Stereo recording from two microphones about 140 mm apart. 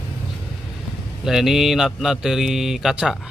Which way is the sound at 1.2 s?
Centre (ahead or behind).